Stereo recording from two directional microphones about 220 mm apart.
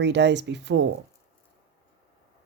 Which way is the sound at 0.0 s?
50° right (ahead or behind).